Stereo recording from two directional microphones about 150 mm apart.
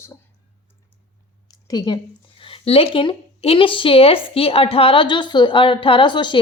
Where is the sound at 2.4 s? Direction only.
40° left (ahead or behind).